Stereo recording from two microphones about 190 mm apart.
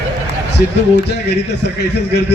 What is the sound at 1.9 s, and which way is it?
Speech, 60° left (ahead or behind).